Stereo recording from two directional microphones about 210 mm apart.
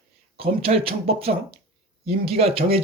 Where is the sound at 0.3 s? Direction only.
25° right (ahead or behind).